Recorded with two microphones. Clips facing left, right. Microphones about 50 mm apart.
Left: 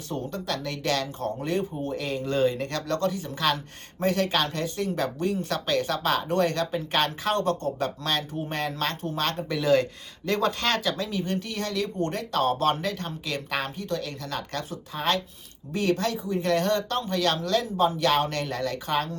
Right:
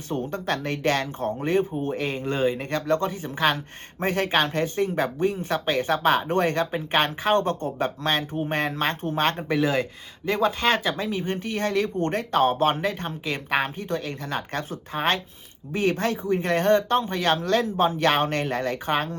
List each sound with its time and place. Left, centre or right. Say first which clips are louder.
0.1 s speech: right 4 dB; right
10.2 s speech: right 3 dB; centre; by 19.1 s right